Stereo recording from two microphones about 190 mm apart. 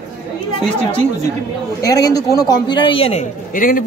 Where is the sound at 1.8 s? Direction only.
20° left (ahead or behind); by 3.8 s 45° left (ahead or behind).